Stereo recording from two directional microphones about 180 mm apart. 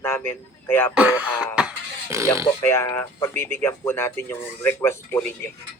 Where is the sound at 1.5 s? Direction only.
10° right (ahead or behind).